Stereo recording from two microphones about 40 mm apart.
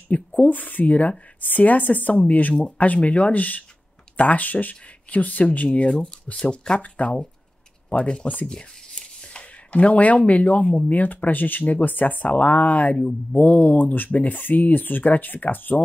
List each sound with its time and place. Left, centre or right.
0.1 s speech: left
6.8 s speech: left
8.5 s shuffling cards: left
10.9 s speech: left
12.9 s speech: left
13.4 s speech: left